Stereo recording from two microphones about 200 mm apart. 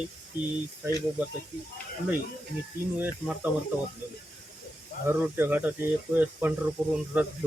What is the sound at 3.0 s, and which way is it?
Speech, 10° right (ahead or behind).